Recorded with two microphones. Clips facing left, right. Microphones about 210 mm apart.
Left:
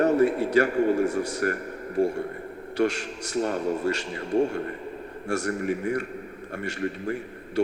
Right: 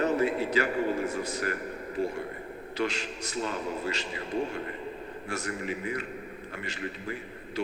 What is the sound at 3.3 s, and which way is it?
Speech, 65° left (ahead or behind).